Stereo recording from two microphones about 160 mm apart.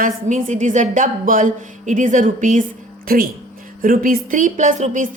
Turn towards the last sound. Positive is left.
turn(degrees=-50)  # may be behind; listen again after turning